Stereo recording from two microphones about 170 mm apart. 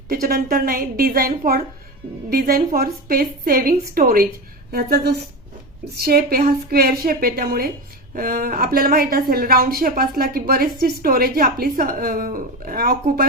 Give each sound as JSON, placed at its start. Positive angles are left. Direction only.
{"t": 0.1, "sound": "a woman's voice", "side_deg": -60}